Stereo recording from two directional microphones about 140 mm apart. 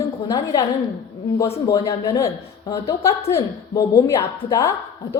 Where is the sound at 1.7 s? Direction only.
25° left (ahead or behind).